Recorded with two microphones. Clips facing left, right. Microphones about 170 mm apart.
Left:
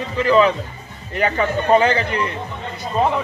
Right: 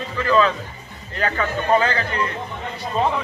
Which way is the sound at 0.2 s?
20° left (ahead or behind).